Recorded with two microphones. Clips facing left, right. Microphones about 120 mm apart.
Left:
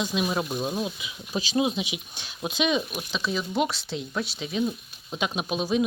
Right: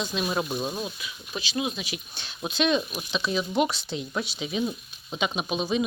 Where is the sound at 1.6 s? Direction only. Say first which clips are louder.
Left 5 dB; 25° left (ahead or behind).